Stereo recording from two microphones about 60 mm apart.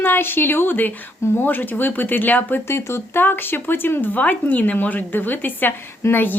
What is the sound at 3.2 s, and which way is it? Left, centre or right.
Speech, left.